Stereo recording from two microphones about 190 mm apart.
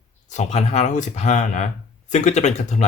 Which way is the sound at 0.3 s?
40° left (ahead or behind).